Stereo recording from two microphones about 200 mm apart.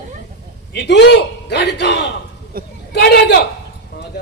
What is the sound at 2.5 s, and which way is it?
Hubbub, 45° right (ahead or behind).